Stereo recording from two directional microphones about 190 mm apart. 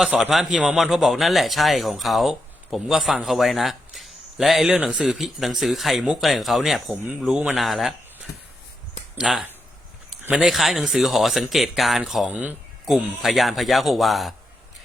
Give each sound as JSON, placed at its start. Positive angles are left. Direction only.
{"t": 0.0, "sound": "a man's voice", "side_deg": -5}
{"t": 9.1, "sound": "a man's voice", "side_deg": -5}